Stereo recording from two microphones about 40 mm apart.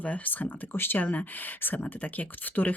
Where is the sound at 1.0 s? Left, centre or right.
Left.